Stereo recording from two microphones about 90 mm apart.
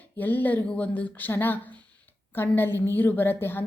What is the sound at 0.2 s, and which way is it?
A woman's voice, 20° left (ahead or behind).